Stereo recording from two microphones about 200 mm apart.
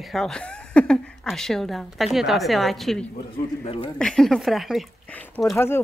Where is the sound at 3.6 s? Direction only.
25° left (ahead or behind).